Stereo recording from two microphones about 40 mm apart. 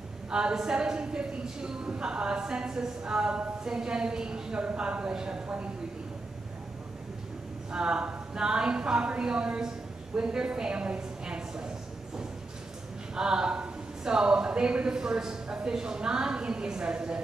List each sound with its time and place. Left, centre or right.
0.3 s speech: right
7.7 s speech: right
13.1 s speech: centre